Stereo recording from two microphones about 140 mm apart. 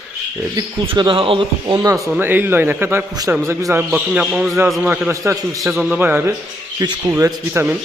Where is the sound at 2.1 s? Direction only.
15° right (ahead or behind).